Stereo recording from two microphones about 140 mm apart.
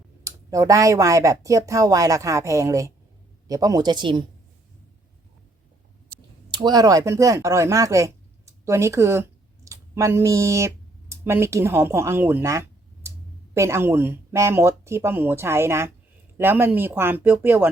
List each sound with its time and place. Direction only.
0.3 s speech: 20° right (ahead or behind)
6.5 s speech: 30° right (ahead or behind)